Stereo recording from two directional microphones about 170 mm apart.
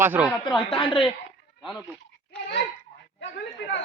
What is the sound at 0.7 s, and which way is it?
Speech, 30° left (ahead or behind).